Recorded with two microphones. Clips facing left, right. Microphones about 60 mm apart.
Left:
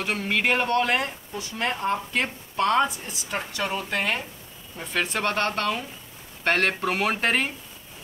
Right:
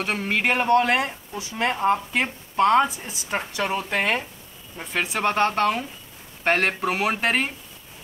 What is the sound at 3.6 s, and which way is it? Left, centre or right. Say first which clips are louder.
Speech: right 3 dB; right.